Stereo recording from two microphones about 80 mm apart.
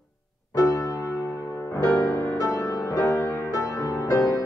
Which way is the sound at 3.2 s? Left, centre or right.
Left.